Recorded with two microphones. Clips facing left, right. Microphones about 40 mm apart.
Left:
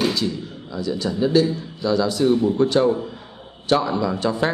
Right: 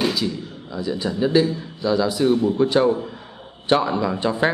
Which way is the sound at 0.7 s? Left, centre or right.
Centre.